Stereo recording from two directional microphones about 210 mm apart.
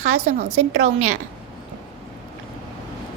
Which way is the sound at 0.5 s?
90° right.